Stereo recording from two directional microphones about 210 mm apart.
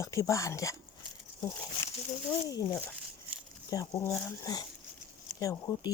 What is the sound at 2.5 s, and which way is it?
Speech, 15° left (ahead or behind).